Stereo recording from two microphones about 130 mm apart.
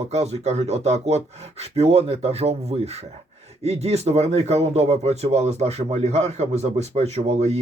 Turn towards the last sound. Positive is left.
turn(degrees=-55)  # may be behind; listen again after turning